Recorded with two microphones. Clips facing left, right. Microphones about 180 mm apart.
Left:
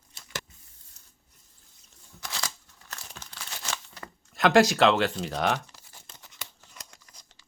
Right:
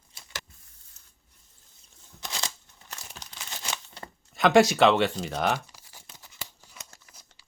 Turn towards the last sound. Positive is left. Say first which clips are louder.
# right 1 dB
turn(degrees=-5)  # may be behind; listen again after turning